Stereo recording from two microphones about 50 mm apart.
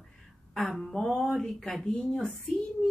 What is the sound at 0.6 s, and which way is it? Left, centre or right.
Speech, centre.